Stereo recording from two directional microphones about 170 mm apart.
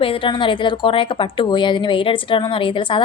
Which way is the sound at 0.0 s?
30° left (ahead or behind).